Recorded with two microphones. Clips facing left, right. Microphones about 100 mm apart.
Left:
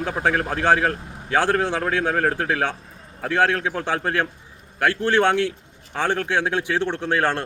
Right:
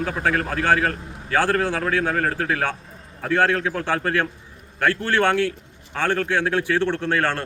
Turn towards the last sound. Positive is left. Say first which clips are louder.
# left 1 dB
turn(degrees=15)  # may be behind; listen again after turning